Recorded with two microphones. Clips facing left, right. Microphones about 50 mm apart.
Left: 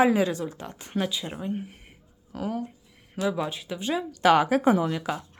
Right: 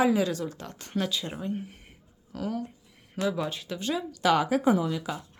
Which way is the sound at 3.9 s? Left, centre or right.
Left.